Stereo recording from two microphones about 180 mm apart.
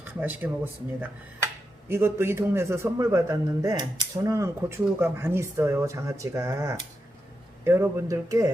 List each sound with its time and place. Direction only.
0.0 s a man's voice: 10° right (ahead or behind)